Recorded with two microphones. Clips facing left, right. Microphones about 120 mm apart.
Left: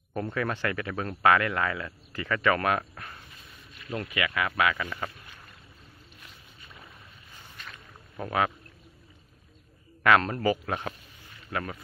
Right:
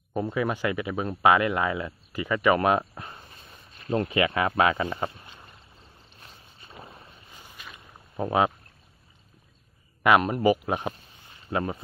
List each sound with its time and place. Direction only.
0.1 s speech: 15° right (ahead or behind)
3.3 s a sound: 35° right (ahead or behind)
6.1 s boat: 35° right (ahead or behind)
7.3 s boat: 10° right (ahead or behind)
8.2 s speech: 25° right (ahead or behind)
10.0 s speech: 15° right (ahead or behind)